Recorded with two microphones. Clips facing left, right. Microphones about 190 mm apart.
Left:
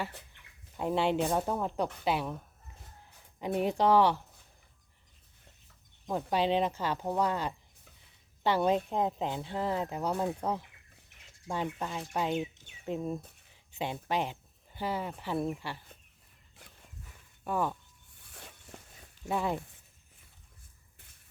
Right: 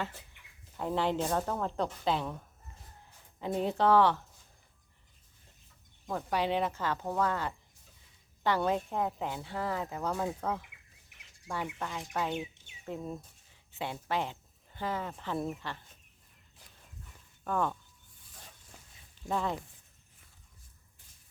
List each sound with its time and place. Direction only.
0.8 s speech: 15° left (ahead or behind)
3.4 s speech: 15° left (ahead or behind)
6.1 s speech: 20° left (ahead or behind)
17.4 s speech: 10° left (ahead or behind)
18.2 s a sound: 65° left (ahead or behind)
19.2 s speech: 10° left (ahead or behind)